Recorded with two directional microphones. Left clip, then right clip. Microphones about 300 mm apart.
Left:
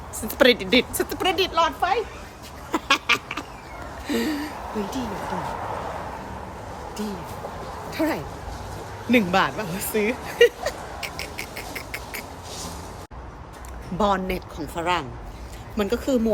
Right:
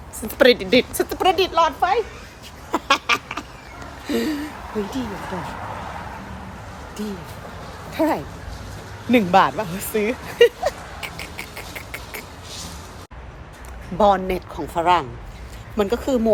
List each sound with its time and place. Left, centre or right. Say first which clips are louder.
0.3 s speech: right 3 dB; centre
2.7 s a sound: right 2 dB; centre
4.0 s speech: right 2 dB; centre
5.1 s speech: left 1 dB; left
7.9 s speech: right 5 dB; centre
9.0 s a sound: right 5 dB; centre
14.0 s speech: right 6 dB; centre